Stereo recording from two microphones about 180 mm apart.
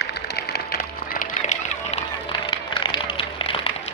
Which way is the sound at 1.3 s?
40° left (ahead or behind).